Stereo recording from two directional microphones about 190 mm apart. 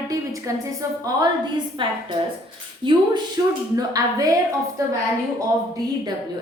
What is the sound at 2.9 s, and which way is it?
A woman's voice, 25° right (ahead or behind).